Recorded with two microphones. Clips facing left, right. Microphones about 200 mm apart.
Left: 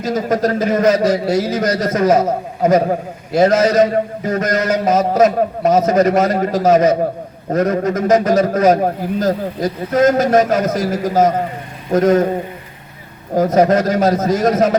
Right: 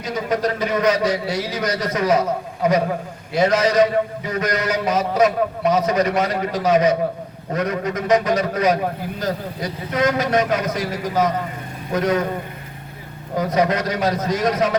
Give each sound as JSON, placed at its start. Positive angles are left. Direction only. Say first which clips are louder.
{"t": 0.0, "sound": "a man's voice", "louder": "left 5 dB", "side_deg": 45}
{"t": 13.3, "sound": "a man's voice", "louder": "left 7 dB", "side_deg": 45}